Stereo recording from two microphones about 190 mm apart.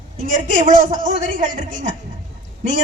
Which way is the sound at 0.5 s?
40° right (ahead or behind).